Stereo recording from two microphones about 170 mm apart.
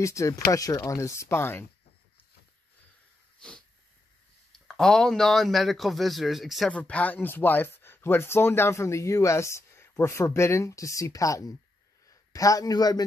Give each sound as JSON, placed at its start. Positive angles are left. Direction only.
{"t": 0.0, "sound": "speech", "side_deg": 20}
{"t": 3.3, "sound": "wheeze", "side_deg": 5}
{"t": 4.5, "sound": "a man's voice", "side_deg": 5}